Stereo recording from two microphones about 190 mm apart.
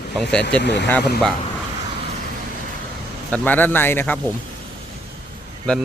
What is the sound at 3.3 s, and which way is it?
Speech, 10° left (ahead or behind).